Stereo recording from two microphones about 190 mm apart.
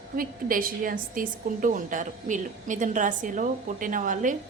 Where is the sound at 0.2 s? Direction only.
50° right (ahead or behind).